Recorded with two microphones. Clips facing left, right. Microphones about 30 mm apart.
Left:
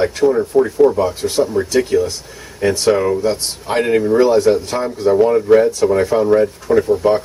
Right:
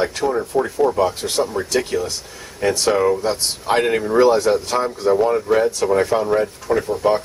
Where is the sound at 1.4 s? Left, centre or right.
Centre.